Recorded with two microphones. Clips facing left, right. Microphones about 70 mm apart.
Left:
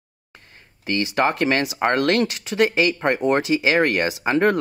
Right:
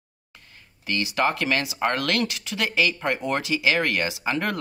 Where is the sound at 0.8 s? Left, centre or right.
Left.